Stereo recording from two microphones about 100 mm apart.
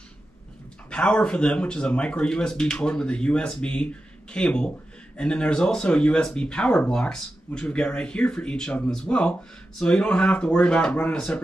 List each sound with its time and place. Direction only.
0.8 s speech: 10° left (ahead or behind)